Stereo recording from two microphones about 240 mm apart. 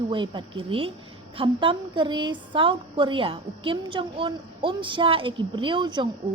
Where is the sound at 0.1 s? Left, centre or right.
Right.